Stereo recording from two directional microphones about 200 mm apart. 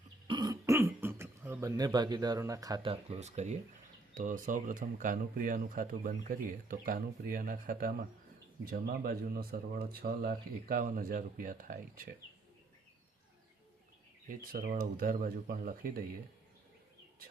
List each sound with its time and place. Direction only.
0.3 s speech: 20° right (ahead or behind); by 12.0 s 45° right (ahead or behind)
14.3 s speech: 45° right (ahead or behind)